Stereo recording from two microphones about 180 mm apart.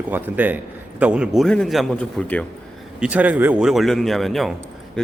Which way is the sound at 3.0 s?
10° right (ahead or behind).